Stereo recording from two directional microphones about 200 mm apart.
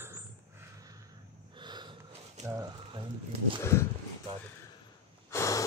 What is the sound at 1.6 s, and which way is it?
Snort, 20° right (ahead or behind).